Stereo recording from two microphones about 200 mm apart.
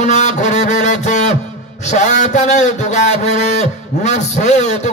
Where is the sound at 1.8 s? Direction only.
35° left (ahead or behind).